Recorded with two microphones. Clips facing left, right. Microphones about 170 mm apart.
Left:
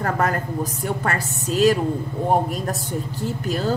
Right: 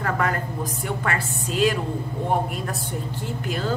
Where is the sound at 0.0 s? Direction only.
40° left (ahead or behind).